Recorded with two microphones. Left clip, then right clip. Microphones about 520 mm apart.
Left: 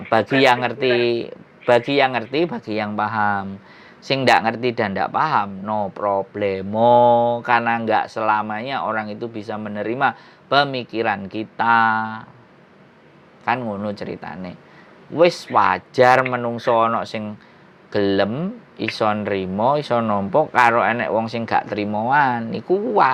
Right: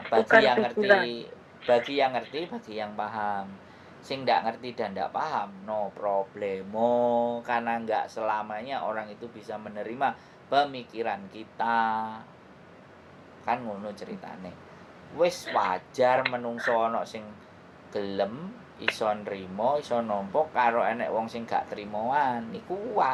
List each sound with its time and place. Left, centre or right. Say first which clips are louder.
0.4 s speech: left 6 dB; left
13.4 s speech: left 8 dB; left